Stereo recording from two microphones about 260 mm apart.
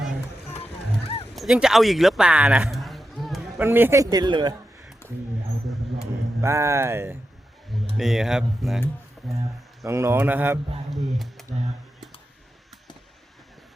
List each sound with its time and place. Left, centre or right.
0.5 s music: left
1.3 s a man's voice: centre
6.4 s speech: centre